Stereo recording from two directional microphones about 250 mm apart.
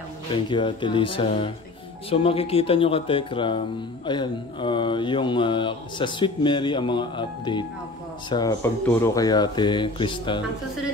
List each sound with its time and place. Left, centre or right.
0.3 s speech: centre